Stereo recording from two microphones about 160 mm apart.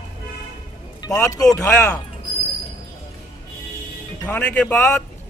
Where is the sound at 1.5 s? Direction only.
20° left (ahead or behind).